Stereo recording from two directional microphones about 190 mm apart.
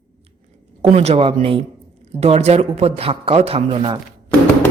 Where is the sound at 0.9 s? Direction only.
35° right (ahead or behind).